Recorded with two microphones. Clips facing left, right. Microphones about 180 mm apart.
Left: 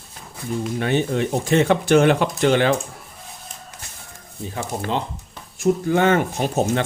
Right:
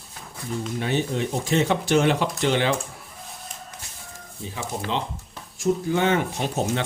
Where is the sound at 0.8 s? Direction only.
60° left (ahead or behind).